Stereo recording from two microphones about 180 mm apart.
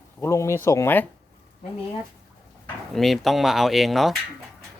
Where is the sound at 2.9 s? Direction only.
Centre (ahead or behind).